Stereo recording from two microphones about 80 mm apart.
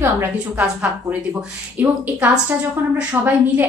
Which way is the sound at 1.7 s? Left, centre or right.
Right.